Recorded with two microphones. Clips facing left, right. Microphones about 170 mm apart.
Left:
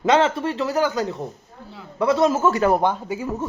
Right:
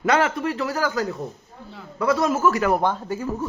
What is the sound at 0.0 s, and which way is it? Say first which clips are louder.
Speech: left 2 dB; 25° left (ahead or behind).